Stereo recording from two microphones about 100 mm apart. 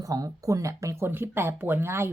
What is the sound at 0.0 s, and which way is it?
A woman's voice, 35° right (ahead or behind).